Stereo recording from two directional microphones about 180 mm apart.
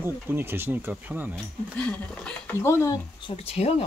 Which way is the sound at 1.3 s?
5° left (ahead or behind).